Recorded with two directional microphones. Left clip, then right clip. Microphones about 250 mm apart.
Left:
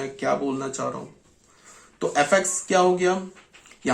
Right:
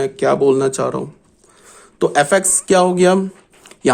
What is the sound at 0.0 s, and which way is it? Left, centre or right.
Speech, right.